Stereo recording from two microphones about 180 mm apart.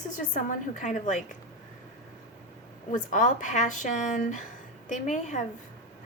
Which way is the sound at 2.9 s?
45° left (ahead or behind).